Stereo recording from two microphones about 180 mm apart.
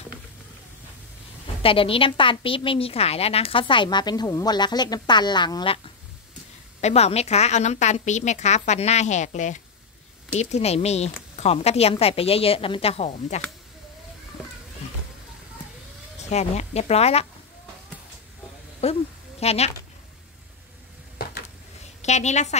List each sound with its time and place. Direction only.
1.6 s a woman's voice: 30° left (ahead or behind)
6.8 s a woman's voice: 35° left (ahead or behind)
16.3 s a woman's voice: 40° left (ahead or behind)
18.8 s a woman's voice: 35° left (ahead or behind)
22.0 s a woman's voice: 40° left (ahead or behind)